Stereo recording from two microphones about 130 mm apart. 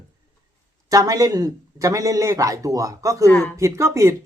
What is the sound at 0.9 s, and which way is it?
A man's voice, 25° right (ahead or behind).